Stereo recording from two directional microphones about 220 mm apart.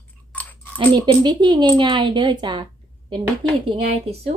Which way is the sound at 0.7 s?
20° right (ahead or behind).